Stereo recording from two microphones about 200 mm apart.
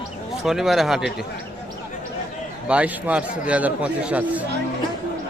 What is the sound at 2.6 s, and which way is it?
A man's voice, 5° right (ahead or behind).